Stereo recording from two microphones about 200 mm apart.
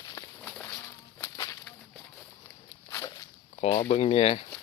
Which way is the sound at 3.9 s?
30° left (ahead or behind).